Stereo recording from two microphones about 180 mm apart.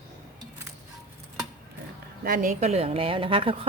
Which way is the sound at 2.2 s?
50° right (ahead or behind).